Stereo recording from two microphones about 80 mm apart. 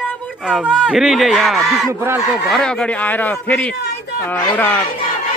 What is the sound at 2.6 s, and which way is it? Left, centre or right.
Speech, centre.